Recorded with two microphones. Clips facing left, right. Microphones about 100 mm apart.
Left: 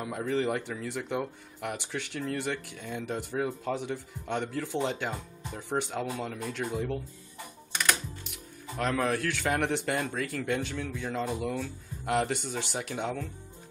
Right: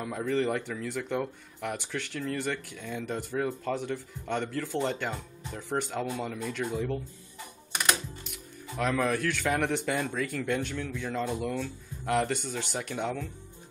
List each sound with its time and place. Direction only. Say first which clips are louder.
0.0 s speech: right 1 dB; 5° left (ahead or behind)
8.3 s speech: even; centre (ahead or behind)